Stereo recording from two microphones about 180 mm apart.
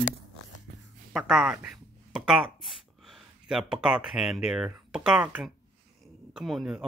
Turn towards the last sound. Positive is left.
turn(degrees=0)  # may be behind; listen again after turning